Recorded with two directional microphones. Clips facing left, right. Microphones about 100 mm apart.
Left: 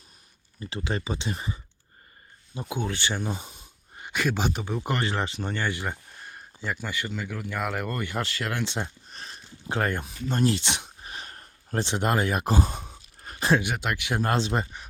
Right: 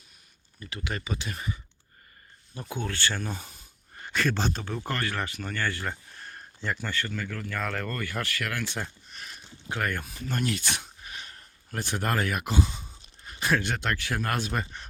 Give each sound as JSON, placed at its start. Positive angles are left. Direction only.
{"t": 0.6, "sound": "speech", "side_deg": 30}
{"t": 9.0, "sound": "speech", "side_deg": 30}
{"t": 11.0, "sound": "a sound", "side_deg": 35}
{"t": 11.8, "sound": "speech", "side_deg": 25}
{"t": 12.5, "sound": "speech", "side_deg": 45}
{"t": 13.2, "sound": "a sound", "side_deg": 30}
{"t": 13.6, "sound": "speech", "side_deg": 10}
{"t": 14.2, "sound": "speech", "side_deg": 25}